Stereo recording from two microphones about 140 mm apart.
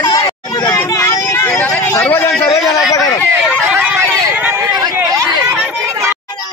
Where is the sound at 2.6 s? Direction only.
Centre (ahead or behind).